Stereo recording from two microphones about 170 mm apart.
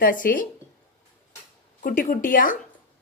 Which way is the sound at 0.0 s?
55° left (ahead or behind).